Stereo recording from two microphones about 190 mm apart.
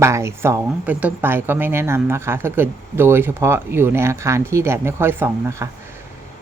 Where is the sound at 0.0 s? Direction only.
15° right (ahead or behind).